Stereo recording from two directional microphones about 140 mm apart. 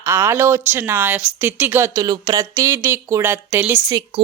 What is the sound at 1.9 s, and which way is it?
Speech, 30° right (ahead or behind).